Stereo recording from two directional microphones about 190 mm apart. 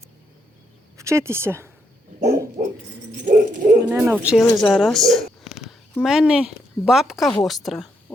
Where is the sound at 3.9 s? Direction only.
10° right (ahead or behind).